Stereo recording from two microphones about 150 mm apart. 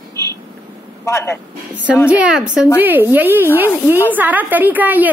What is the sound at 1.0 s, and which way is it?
Speech, 20° left (ahead or behind).